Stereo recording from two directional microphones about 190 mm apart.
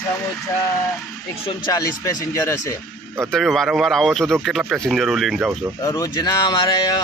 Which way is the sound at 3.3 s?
Centre (ahead or behind).